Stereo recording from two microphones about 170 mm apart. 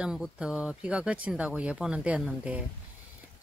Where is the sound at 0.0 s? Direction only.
5° right (ahead or behind).